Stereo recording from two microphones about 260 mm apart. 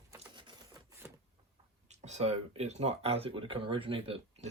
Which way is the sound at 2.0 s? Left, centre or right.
Right.